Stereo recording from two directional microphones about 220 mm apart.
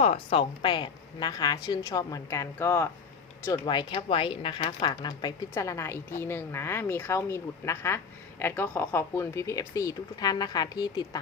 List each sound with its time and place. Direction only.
0.0 s speech: 30° left (ahead or behind)